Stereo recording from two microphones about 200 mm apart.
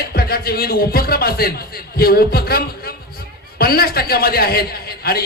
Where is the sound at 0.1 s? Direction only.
50° left (ahead or behind).